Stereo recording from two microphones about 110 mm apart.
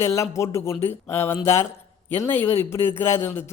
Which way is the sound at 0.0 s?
25° left (ahead or behind).